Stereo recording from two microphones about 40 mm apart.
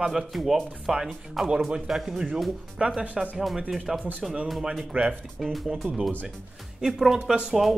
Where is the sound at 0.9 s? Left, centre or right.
Centre.